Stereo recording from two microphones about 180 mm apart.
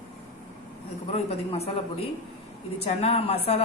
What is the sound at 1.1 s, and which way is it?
A man's voice, 35° left (ahead or behind).